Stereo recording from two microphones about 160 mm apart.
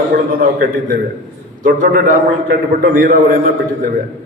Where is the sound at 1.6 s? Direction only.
60° right (ahead or behind).